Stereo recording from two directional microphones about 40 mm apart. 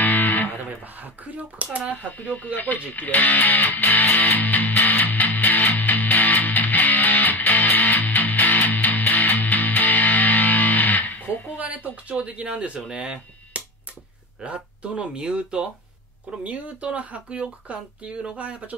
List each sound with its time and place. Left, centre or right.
0.0 s music: left
0.9 s speech: right
2.0 s music: left
11.5 s speech: right
13.5 s music: right
14.4 s speech: right
16.4 s speech: right